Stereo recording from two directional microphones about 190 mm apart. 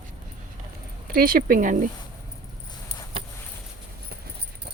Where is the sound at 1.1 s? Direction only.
50° right (ahead or behind).